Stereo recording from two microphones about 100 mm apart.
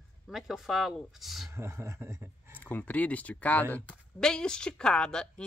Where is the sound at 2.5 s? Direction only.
15° left (ahead or behind).